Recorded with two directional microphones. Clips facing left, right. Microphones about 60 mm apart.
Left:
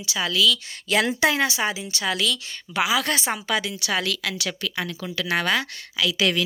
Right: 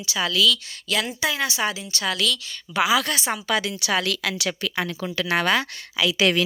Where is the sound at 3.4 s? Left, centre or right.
Centre.